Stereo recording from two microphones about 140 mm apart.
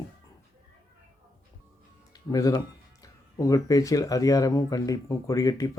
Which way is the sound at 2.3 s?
25° left (ahead or behind).